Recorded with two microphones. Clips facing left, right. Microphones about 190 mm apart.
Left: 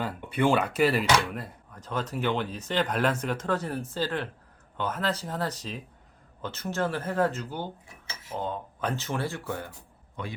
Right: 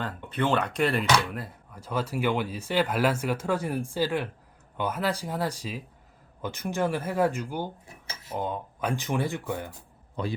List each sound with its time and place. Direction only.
0.0 s speech: 10° left (ahead or behind); by 9.6 s 15° right (ahead or behind)
10.2 s speech: 35° right (ahead or behind)